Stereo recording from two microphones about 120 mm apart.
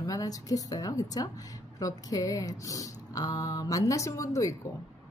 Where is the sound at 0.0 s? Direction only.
30° left (ahead or behind).